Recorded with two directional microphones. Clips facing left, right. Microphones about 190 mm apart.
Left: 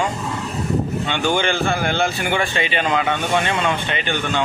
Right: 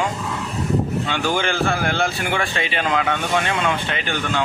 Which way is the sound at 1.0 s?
Centre (ahead or behind).